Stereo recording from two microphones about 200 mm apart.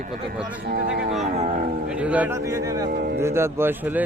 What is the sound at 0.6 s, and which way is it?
Speech, 50° right (ahead or behind).